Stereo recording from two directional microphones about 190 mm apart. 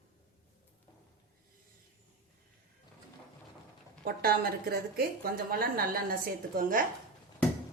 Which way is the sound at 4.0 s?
50° right (ahead or behind).